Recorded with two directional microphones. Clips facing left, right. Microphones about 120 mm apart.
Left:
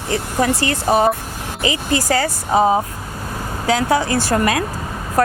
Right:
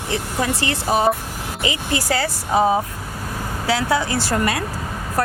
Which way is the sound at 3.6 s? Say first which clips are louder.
Left 3 dB; 45° left (ahead or behind).